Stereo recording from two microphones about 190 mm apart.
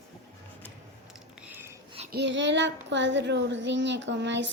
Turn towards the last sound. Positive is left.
turn(degrees=-70)  # may be behind; listen again after turning